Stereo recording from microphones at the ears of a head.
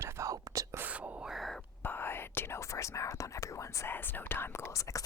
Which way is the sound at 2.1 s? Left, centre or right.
Left.